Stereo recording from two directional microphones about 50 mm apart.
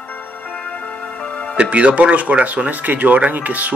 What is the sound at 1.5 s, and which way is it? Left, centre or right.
Speech, right.